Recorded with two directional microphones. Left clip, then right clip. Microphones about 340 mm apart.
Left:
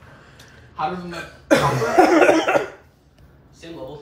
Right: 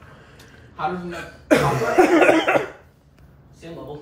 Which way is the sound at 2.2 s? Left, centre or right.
Centre.